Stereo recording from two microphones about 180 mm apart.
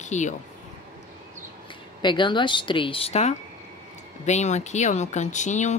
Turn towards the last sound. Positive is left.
turn(degrees=40)  # may be behind; listen again after turning